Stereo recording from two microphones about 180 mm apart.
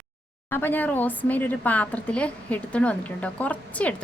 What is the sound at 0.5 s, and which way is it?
A woman's voice, 10° left (ahead or behind).